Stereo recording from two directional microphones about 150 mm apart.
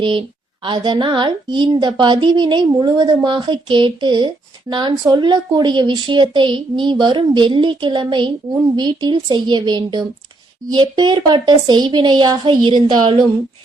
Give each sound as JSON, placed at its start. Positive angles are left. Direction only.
{"t": 0.0, "sound": "a woman's voice", "side_deg": -35}